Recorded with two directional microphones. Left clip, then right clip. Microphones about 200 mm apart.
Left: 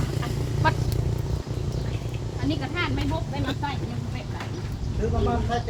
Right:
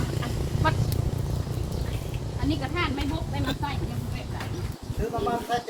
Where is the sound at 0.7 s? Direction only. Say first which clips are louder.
Left 2 dB; 50° left (ahead or behind).